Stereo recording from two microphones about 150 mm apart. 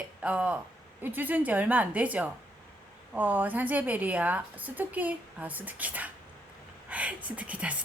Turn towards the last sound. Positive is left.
turn(degrees=-10)  # may be behind; listen again after turning